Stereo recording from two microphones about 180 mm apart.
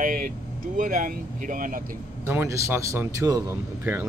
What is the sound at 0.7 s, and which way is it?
Speech, 50° right (ahead or behind).